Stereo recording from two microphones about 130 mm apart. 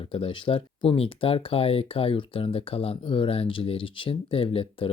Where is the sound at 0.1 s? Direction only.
45° left (ahead or behind).